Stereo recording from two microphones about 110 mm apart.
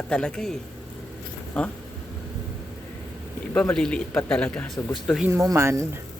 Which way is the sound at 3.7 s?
10° left (ahead or behind).